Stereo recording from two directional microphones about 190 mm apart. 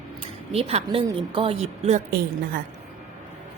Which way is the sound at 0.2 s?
30° right (ahead or behind).